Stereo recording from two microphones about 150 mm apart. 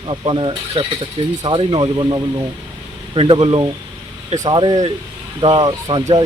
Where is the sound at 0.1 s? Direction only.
35° right (ahead or behind).